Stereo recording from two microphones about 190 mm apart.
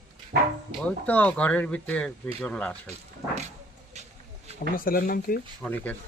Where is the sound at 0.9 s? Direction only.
10° left (ahead or behind).